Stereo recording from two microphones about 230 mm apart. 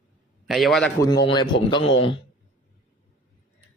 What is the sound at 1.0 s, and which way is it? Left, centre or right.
Speech, centre.